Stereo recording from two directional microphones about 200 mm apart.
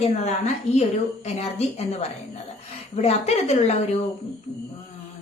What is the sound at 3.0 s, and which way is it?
Speech, 30° left (ahead or behind).